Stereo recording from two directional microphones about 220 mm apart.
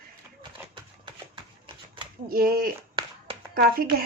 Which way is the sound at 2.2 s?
40° right (ahead or behind).